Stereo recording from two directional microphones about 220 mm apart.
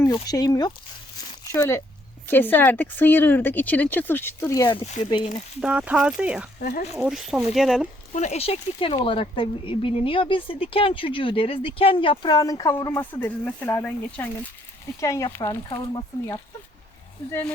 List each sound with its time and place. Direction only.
0.0 s speech: 15° left (ahead or behind)
5.5 s speech: 5° right (ahead or behind)
6.6 s speech: 45° left (ahead or behind)
6.9 s speech: centre (ahead or behind)
8.1 s speech: 30° left (ahead or behind)